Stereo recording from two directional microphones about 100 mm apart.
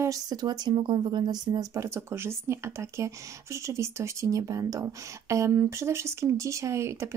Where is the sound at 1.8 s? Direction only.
25° right (ahead or behind).